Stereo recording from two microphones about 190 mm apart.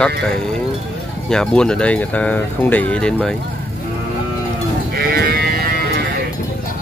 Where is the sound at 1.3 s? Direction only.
5° left (ahead or behind).